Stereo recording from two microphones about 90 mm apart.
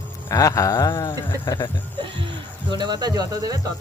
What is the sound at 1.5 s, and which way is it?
Speech, 55° left (ahead or behind).